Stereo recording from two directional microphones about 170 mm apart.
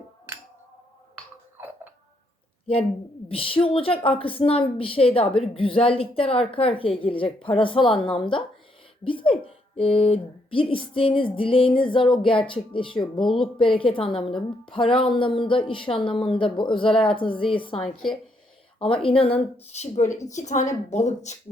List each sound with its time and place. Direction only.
3.2 s a woman's voice: 35° left (ahead or behind)
13.2 s a woman's voice: centre (ahead or behind)
13.6 s a woman's voice: 30° left (ahead or behind)
17.8 s a woman's voice: centre (ahead or behind)
18.8 s a woman's voice: 30° left (ahead or behind)